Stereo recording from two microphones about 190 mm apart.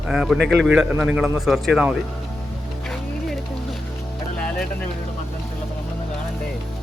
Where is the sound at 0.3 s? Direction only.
60° right (ahead or behind).